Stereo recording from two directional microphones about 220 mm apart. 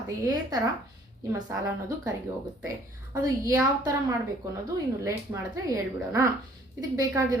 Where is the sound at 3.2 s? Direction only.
15° right (ahead or behind).